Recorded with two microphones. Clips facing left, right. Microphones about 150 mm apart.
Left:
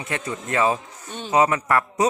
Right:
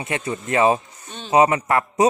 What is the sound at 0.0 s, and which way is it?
Speech, 25° right (ahead or behind).